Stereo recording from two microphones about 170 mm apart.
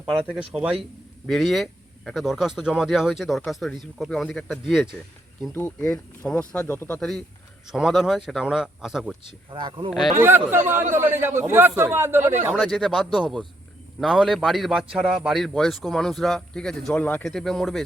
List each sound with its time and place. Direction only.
0.0 s a man's voice: 5° right (ahead or behind)
5.5 s a man's voice: 10° left (ahead or behind)
9.5 s speech: 30° right (ahead or behind)
10.2 s a man's voice: 15° right (ahead or behind)
12.5 s a man's voice: centre (ahead or behind)